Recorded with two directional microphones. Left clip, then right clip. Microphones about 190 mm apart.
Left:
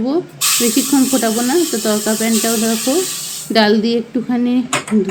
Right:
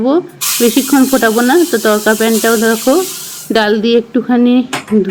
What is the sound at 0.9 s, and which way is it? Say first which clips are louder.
A woman's voice: right 7 dB; 10° right (ahead or behind).